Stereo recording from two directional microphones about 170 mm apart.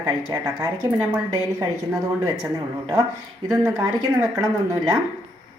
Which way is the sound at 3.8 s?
20° right (ahead or behind).